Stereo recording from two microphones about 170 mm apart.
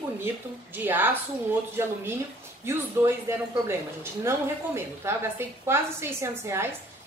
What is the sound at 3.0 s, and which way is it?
Speech, 10° right (ahead or behind).